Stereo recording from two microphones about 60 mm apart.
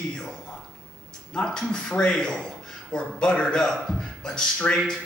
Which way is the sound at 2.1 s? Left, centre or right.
Centre.